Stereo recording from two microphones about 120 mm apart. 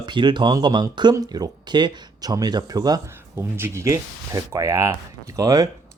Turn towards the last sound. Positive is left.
turn(degrees=-30)  # may be behind; listen again after turning